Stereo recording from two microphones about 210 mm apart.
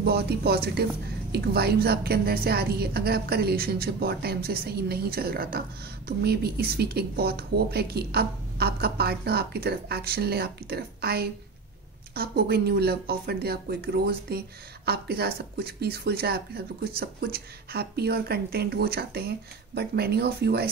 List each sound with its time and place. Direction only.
0.0 s speech: 50° right (ahead or behind)